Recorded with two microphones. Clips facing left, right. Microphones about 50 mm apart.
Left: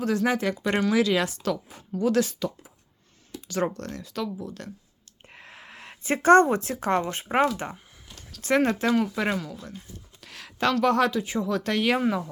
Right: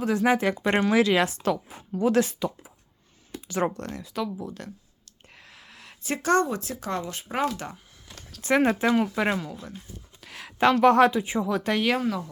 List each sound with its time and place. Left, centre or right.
0.0 s speech: centre
5.3 s speech: left
8.3 s speech: centre
10.2 s a sound: centre
10.6 s speech: right; by 11.8 s centre
11.9 s speech: centre